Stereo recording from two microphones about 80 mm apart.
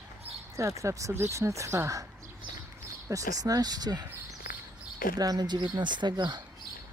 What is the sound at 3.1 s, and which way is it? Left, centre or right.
Speech, right.